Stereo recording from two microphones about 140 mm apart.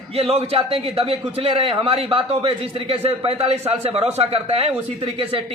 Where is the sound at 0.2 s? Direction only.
45° right (ahead or behind).